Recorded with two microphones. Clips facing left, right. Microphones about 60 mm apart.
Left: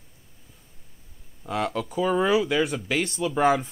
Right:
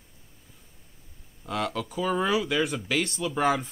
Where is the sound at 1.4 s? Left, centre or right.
Centre.